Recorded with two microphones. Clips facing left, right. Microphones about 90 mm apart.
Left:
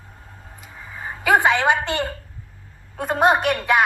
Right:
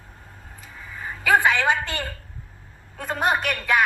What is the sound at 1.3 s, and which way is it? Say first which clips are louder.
Speech: left 2 dB; 20° left (ahead or behind).